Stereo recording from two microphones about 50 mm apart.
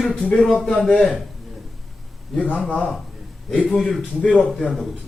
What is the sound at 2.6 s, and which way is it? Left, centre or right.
Speech, centre.